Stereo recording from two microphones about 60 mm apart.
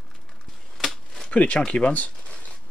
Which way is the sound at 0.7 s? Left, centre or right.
Centre.